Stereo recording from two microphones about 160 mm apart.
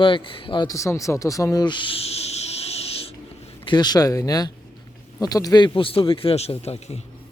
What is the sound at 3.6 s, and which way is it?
A man's voice, 25° left (ahead or behind).